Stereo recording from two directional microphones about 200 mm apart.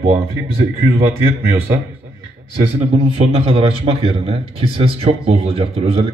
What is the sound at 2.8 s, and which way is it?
A man's voice, 30° right (ahead or behind).